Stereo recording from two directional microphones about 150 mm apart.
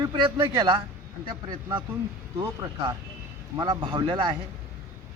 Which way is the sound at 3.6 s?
30° right (ahead or behind).